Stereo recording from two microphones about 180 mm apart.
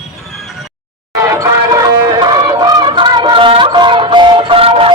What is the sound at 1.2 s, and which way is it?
Fowl, 20° right (ahead or behind).